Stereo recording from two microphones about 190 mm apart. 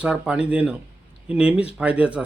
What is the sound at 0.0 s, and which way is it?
A man's voice, 5° right (ahead or behind).